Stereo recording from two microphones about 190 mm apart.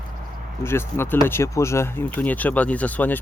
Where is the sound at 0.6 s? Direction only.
10° left (ahead or behind).